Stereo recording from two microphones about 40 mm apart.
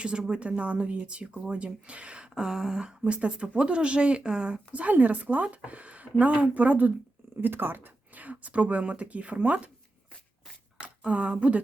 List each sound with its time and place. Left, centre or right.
0.0 s speech: right
4.7 s speech: right
7.4 s speech: right
8.1 s speech: right
10.8 s speech: right